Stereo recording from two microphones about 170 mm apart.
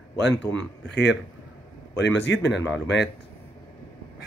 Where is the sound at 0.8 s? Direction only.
80° left.